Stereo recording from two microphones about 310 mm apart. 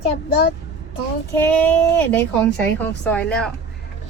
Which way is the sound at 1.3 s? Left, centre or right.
Centre.